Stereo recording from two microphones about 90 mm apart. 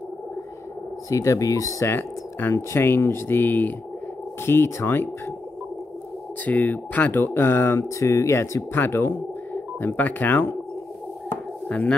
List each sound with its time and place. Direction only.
1.1 s speech: 35° left (ahead or behind)
6.4 s speech: 20° left (ahead or behind)
11.7 s speech: 10° left (ahead or behind)